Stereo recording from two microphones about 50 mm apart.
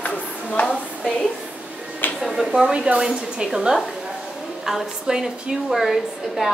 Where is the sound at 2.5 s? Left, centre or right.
Centre.